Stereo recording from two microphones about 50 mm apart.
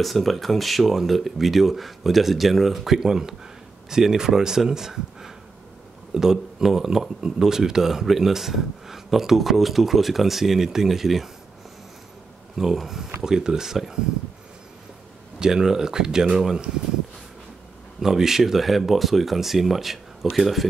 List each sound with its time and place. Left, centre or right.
0.0 s speech: centre
12.5 s speech: centre
15.3 s speech: centre
18.0 s speech: centre